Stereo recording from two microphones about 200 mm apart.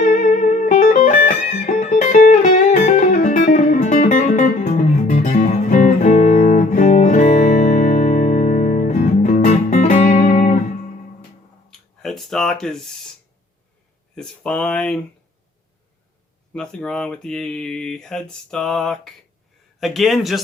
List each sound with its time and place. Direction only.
0.0 s music: 35° left (ahead or behind)
11.7 s a sound: centre (ahead or behind)
14.2 s speech: 5° left (ahead or behind)
16.6 s speech: 5° left (ahead or behind)